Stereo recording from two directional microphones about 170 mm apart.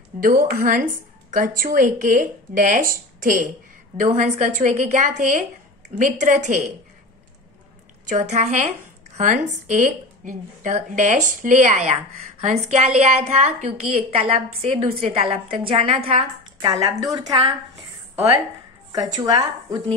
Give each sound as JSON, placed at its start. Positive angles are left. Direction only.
{"t": 0.2, "sound": "a woman's voice", "side_deg": -55}
{"t": 8.1, "sound": "a woman's voice", "side_deg": -45}
{"t": 18.9, "sound": "a woman's voice", "side_deg": -25}